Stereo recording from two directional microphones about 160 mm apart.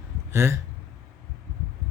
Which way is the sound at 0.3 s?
15° right (ahead or behind).